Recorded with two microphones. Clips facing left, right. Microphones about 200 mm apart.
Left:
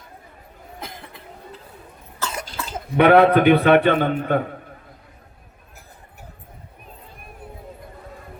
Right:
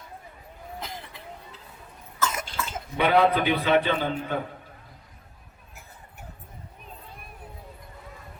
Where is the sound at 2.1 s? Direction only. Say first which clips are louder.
Even; 30° left (ahead or behind).